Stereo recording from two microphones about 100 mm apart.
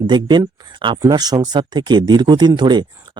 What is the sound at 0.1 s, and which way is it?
Speech, 50° right (ahead or behind).